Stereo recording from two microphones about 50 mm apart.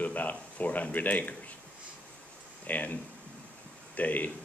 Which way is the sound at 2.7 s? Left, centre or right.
Left.